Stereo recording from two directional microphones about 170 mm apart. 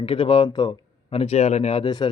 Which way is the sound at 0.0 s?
30° left (ahead or behind).